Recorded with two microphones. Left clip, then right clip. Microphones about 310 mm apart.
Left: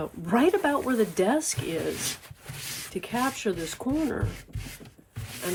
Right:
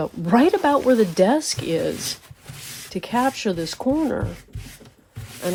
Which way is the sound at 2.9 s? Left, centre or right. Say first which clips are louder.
Right 8 dB; right.